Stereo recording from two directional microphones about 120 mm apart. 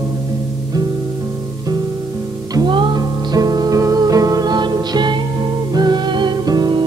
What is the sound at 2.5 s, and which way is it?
Music, 40° right (ahead or behind).